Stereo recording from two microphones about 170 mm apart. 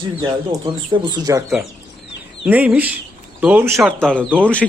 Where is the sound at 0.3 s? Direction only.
25° right (ahead or behind).